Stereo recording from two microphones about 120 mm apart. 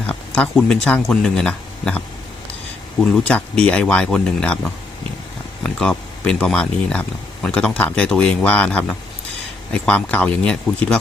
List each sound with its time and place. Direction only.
0.1 s speech: 10° left (ahead or behind)
3.0 s speech: 10° left (ahead or behind)
5.6 s speech: 5° left (ahead or behind)